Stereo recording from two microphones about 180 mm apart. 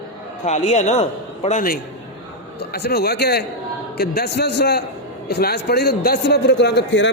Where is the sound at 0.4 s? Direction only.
40° left (ahead or behind).